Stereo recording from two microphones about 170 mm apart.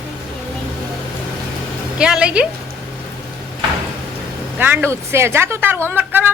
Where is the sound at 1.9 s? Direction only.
5° right (ahead or behind).